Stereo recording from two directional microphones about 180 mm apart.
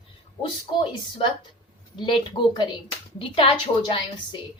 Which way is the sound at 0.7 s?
30° left (ahead or behind).